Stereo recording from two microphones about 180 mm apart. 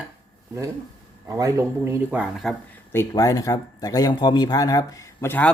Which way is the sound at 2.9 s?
15° left (ahead or behind).